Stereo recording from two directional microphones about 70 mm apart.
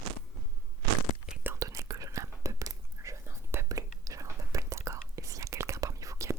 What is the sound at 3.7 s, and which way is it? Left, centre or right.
Whispering, right.